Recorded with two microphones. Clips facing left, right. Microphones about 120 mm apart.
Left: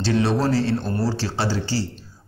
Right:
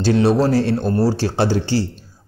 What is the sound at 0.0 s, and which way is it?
A man's voice, 40° right (ahead or behind).